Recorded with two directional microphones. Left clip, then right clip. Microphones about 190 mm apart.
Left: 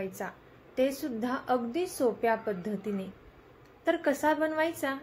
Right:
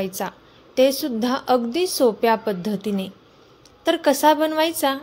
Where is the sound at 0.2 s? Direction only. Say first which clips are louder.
Right 10 dB; 55° right (ahead or behind).